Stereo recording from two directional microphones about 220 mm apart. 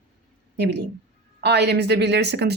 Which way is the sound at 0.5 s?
50° right (ahead or behind).